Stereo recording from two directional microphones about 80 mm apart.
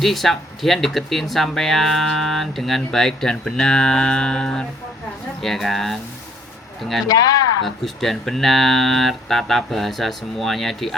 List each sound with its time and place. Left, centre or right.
0.0 s speech: centre
7.1 s speech: left
7.6 s speech: centre